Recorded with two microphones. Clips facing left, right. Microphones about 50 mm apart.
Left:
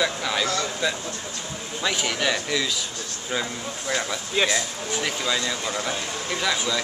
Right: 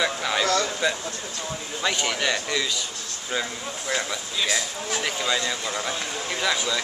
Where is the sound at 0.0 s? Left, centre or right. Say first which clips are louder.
Even; centre.